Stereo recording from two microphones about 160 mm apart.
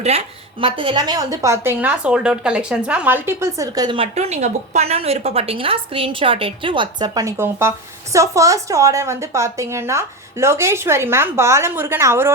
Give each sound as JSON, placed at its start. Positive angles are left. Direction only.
{"t": 0.6, "sound": "a woman's voice", "side_deg": -30}